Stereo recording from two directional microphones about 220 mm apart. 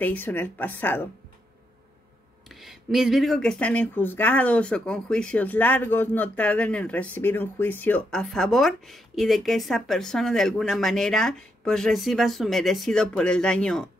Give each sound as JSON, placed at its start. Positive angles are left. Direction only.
{"t": 0.0, "sound": "a woman's voice", "side_deg": 10}
{"t": 2.5, "sound": "speech", "side_deg": 0}